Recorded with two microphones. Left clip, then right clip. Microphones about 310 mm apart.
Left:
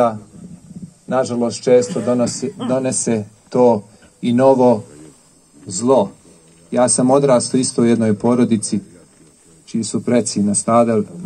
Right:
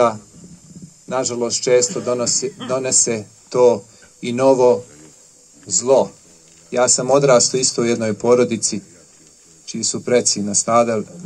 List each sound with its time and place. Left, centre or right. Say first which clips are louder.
1.0 s a man's voice: left 3 dB; right